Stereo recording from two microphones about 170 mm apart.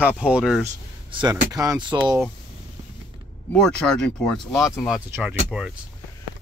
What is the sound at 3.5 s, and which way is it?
Speech, 5° left (ahead or behind).